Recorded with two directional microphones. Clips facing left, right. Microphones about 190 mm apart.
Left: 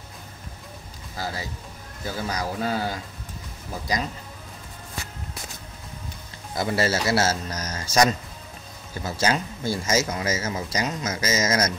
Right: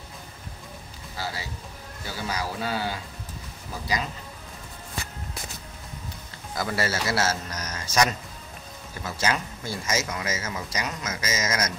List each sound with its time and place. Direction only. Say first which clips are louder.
1.1 s speech: left 2 dB; 45° left (ahead or behind)
6.5 s speech: left 4 dB; 25° left (ahead or behind)